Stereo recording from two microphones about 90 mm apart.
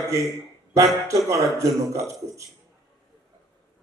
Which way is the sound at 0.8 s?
35° right (ahead or behind).